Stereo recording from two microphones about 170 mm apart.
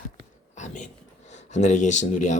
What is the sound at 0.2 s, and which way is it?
Whispering, 45° left (ahead or behind).